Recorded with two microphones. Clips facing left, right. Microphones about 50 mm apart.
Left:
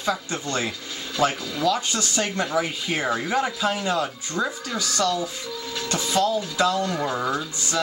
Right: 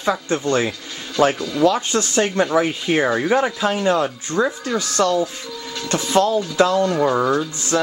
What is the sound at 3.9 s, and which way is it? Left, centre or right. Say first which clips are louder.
Speech: right 6 dB; right.